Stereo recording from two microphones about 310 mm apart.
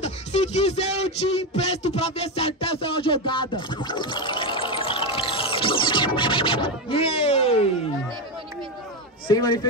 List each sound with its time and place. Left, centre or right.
0.0 s speech: left
9.3 s speech: centre